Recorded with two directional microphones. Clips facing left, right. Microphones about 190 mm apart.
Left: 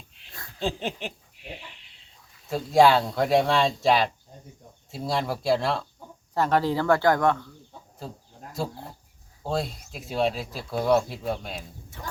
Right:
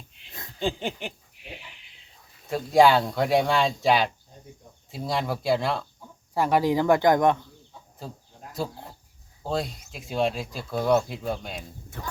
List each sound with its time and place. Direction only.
0.6 s speech: centre (ahead or behind)
2.5 s speech: centre (ahead or behind)
6.3 s speech: 10° right (ahead or behind)
9.4 s speech: centre (ahead or behind)